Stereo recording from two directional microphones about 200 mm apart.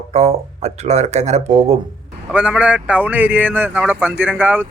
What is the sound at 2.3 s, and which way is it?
Speech, 5° right (ahead or behind).